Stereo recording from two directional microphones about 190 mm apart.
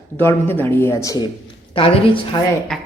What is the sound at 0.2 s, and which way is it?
Speech, 10° left (ahead or behind).